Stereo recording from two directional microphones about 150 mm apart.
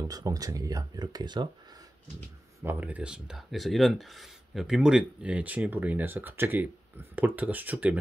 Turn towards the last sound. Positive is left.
turn(degrees=-10)  # may be behind; listen again after turning